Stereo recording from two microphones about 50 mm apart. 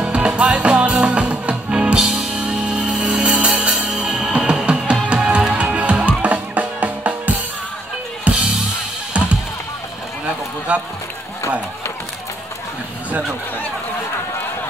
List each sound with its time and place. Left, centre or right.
0.0 s music: right
2.0 s music: centre; by 8.4 s right
10.7 s a sound: right